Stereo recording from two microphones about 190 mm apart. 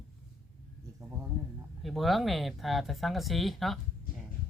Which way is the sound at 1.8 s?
Centre (ahead or behind).